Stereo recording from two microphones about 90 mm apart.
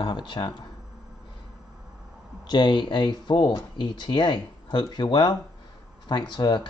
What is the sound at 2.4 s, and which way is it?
Speech, 55° left (ahead or behind).